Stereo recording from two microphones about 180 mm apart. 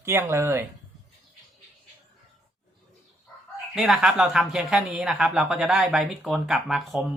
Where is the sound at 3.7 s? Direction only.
Centre (ahead or behind).